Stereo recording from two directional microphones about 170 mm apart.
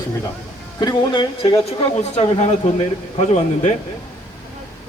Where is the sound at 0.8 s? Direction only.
25° left (ahead or behind).